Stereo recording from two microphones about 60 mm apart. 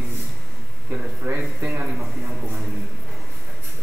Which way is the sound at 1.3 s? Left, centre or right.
Right.